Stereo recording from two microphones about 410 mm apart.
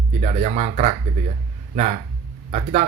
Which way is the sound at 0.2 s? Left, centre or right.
Centre.